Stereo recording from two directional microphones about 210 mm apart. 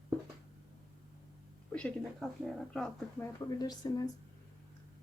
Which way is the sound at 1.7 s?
5° left (ahead or behind).